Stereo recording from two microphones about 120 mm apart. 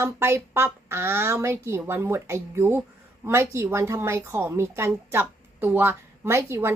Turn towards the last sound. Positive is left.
turn(degrees=-20)  # may be behind; listen again after turning